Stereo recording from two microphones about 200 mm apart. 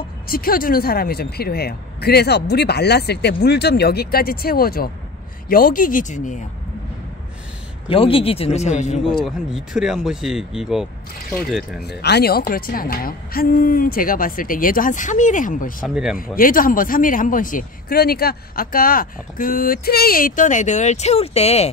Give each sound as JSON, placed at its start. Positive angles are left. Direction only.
{"t": 0.3, "sound": "speech", "side_deg": 45}
{"t": 7.9, "sound": "speech", "side_deg": 25}
{"t": 9.2, "sound": "speech", "side_deg": 0}
{"t": 11.8, "sound": "speech", "side_deg": 55}
{"t": 15.9, "sound": "speech", "side_deg": -5}
{"t": 16.2, "sound": "speech", "side_deg": 45}